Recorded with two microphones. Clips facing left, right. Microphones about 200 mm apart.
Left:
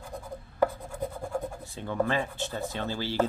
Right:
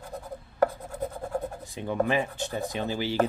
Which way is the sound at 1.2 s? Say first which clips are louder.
Right 1 dB; 15° right (ahead or behind).